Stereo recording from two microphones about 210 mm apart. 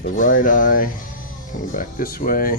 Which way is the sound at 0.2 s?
40° left (ahead or behind).